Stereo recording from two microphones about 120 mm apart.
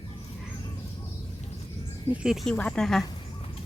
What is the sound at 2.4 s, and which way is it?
Speech, 10° left (ahead or behind).